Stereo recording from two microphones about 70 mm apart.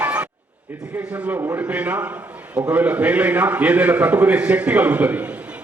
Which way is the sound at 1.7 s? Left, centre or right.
Right.